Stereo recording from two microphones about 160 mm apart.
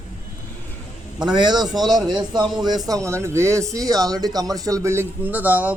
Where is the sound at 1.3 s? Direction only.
25° right (ahead or behind).